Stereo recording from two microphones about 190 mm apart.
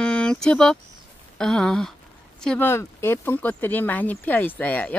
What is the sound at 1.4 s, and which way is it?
Speech, 5° left (ahead or behind).